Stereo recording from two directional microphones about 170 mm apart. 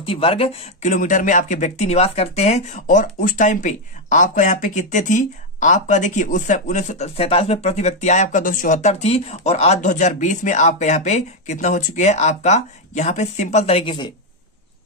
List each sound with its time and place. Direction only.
0.0 s speech: 35° left (ahead or behind)
0.8 s speech: 50° left (ahead or behind); by 14.1 s 30° left (ahead or behind)